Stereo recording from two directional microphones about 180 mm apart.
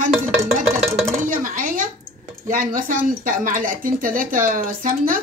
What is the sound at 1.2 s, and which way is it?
Dishes, 45° right (ahead or behind).